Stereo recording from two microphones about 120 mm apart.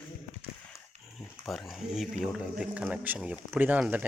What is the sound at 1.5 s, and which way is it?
Speech, centre (ahead or behind).